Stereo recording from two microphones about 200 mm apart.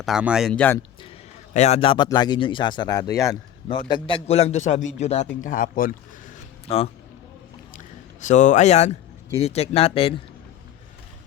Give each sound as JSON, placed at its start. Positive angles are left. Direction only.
{"t": 0.0, "sound": "speech", "side_deg": -5}
{"t": 1.5, "sound": "a man's voice", "side_deg": 35}
{"t": 6.7, "sound": "a man's voice", "side_deg": 30}
{"t": 8.2, "sound": "a man's voice", "side_deg": 40}